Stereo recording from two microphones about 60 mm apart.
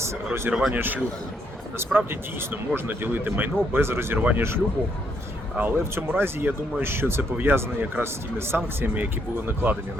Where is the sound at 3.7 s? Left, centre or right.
Right.